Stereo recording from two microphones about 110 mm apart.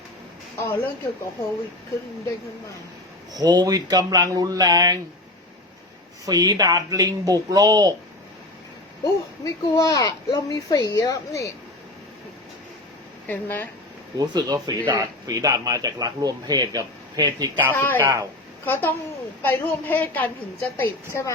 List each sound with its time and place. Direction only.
0.6 s speech: 20° left (ahead or behind)
3.3 s speech: 35° right (ahead or behind)
6.2 s speech: 35° right (ahead or behind)
9.4 s speech: 30° left (ahead or behind)
13.2 s a woman's voice: 15° left (ahead or behind)
14.2 s speech: 35° right (ahead or behind)
17.7 s speech: 20° left (ahead or behind)
18.0 s a man's voice: 30° right (ahead or behind)
18.6 s a woman's voice: 15° left (ahead or behind)